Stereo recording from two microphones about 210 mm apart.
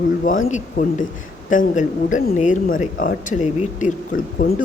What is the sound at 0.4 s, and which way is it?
Speech, 35° left (ahead or behind).